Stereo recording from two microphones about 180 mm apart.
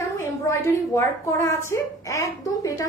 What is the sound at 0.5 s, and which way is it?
A woman's voice, 15° left (ahead or behind).